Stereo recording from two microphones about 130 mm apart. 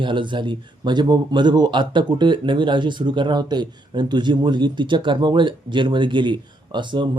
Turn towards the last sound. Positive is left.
turn(degrees=-35)  # may be behind; listen again after turning